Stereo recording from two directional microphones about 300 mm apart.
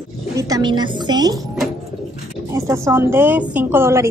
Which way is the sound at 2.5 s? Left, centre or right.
Centre.